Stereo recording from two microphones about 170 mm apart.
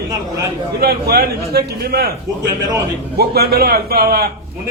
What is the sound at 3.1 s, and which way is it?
A man's voice, 70° right (ahead or behind).